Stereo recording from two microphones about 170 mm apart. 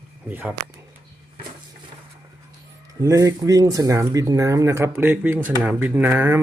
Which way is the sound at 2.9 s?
20° right (ahead or behind).